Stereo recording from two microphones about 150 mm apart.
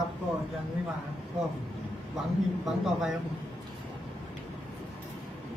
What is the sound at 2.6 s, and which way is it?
Speech, centre (ahead or behind).